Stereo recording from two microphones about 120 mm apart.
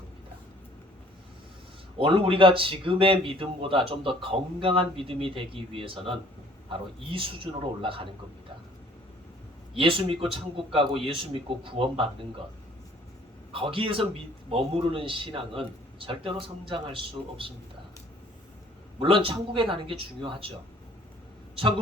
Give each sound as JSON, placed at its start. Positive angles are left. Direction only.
{"t": 2.0, "sound": "a man's voice", "side_deg": -45}
{"t": 9.7, "sound": "a man's voice", "side_deg": -50}
{"t": 13.5, "sound": "a man's voice", "side_deg": -50}
{"t": 18.9, "sound": "a man's voice", "side_deg": -50}